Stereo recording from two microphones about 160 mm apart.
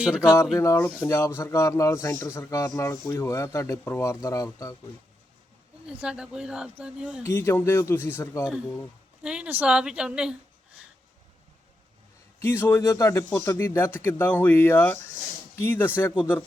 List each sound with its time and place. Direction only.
0.0 s speech: 5° right (ahead or behind)
0.6 s speech: 15° left (ahead or behind)
5.9 s speech: 5° right (ahead or behind)
7.2 s speech: 15° left (ahead or behind)
9.2 s speech: 5° right (ahead or behind)
12.4 s speech: 15° left (ahead or behind)